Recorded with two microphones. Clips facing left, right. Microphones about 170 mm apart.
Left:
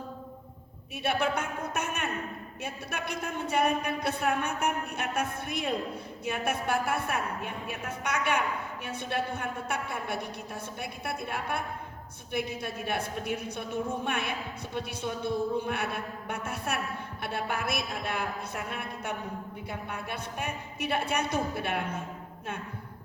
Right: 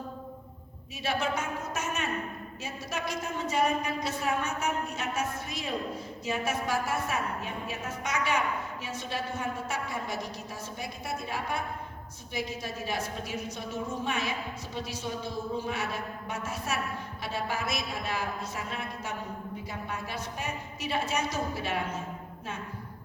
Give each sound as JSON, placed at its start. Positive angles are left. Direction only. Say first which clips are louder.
{"t": 1.0, "sound": "a man's voice", "louder": "left 2 dB", "side_deg": 60}